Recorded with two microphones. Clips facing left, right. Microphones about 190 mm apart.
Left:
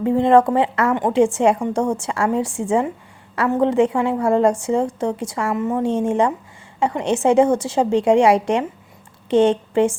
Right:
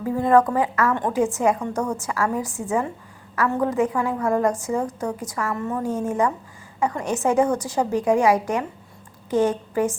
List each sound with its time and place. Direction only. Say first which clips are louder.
0.0 s a woman's voice: left 4 dB; 25° left (ahead or behind)